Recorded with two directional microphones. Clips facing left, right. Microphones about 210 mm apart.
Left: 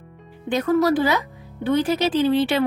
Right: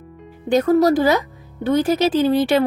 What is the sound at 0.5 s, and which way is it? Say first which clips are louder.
Speech: right 4 dB; 40° right (ahead or behind).